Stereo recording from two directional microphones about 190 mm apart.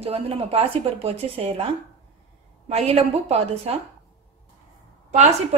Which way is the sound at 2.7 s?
35° right (ahead or behind).